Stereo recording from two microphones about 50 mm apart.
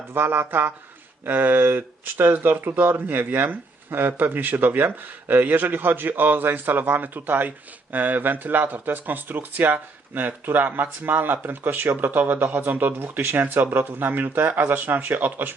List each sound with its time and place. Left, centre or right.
0.1 s speech: right